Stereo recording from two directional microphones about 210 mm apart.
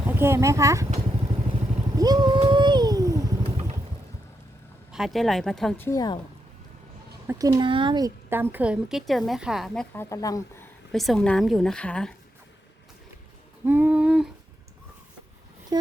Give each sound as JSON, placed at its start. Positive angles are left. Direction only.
{"t": 0.2, "sound": "speech", "side_deg": -15}
{"t": 2.0, "sound": "vehicle", "side_deg": -20}
{"t": 4.9, "sound": "speech", "side_deg": 0}
{"t": 7.3, "sound": "speech", "side_deg": -15}
{"t": 10.9, "sound": "speech", "side_deg": 0}
{"t": 13.7, "sound": "speech", "side_deg": -10}
{"t": 15.7, "sound": "vehicle", "side_deg": -20}